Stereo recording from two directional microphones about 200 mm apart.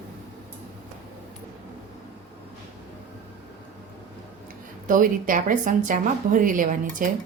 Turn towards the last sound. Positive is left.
turn(degrees=-40)  # may be behind; listen again after turning